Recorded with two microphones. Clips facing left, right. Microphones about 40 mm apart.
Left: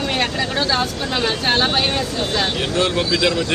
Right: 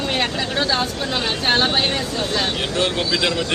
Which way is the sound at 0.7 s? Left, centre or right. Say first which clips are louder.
Left 1 dB; centre.